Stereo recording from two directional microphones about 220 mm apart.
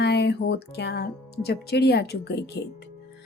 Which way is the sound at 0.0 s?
50° left (ahead or behind).